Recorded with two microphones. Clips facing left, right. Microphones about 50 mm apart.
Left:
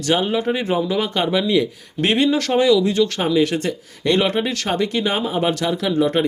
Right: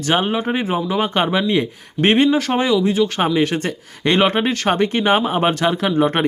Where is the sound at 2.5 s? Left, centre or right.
Right.